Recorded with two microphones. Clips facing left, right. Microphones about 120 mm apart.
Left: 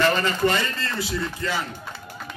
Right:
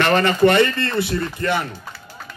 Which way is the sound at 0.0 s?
65° right (ahead or behind).